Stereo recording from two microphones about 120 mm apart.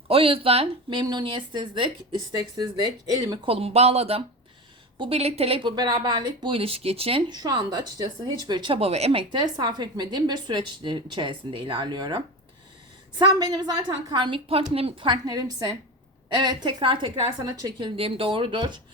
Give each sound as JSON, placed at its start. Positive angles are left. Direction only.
{"t": 0.1, "sound": "a woman's voice", "side_deg": -50}
{"t": 3.4, "sound": "speech", "side_deg": -55}
{"t": 5.6, "sound": "a woman's voice", "side_deg": -35}
{"t": 7.3, "sound": "a woman's voice", "side_deg": -35}
{"t": 9.3, "sound": "a woman's voice", "side_deg": -35}